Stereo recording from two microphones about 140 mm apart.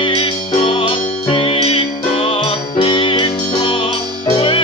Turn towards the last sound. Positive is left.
turn(degrees=35)  # may be behind; listen again after turning